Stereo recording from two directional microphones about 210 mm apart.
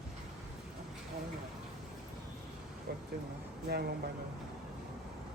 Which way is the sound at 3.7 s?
50° right (ahead or behind).